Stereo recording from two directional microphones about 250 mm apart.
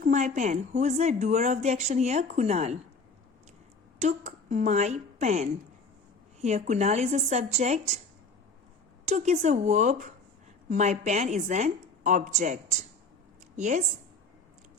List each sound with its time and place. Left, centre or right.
0.0 s a woman's voice: right
4.0 s a woman's voice: right
9.0 s a woman's voice: right